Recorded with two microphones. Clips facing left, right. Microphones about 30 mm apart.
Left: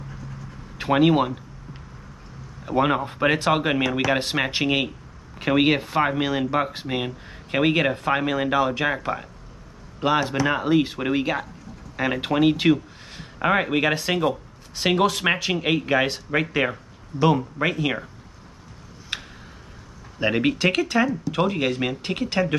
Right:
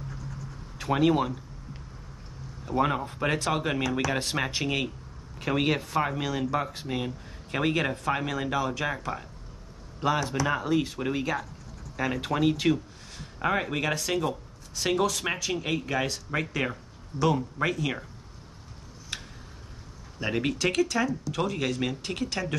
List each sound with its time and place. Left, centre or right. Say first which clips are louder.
0.7 s a sound: left 5 dB; left
2.6 s speech: left 5 dB; left
19.1 s tick-tock: left 6 dB; left
20.2 s speech: left 7 dB; left